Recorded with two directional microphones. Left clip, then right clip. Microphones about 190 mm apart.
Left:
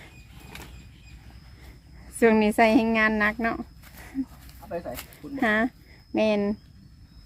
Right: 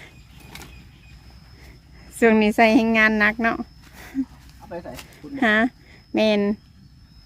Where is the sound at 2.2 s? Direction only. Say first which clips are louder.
Right 3 dB; 15° right (ahead or behind).